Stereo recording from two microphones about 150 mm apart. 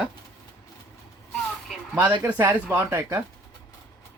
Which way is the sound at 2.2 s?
15° right (ahead or behind).